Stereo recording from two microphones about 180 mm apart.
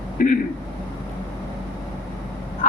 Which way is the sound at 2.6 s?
40° left (ahead or behind).